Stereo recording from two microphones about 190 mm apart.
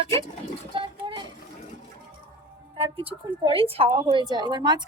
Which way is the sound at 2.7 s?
30° right (ahead or behind).